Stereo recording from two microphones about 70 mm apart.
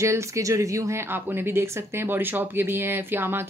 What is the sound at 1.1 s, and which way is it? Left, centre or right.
Speech, right.